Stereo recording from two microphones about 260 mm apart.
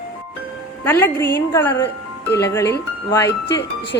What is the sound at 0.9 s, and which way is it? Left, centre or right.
A woman's voice, centre.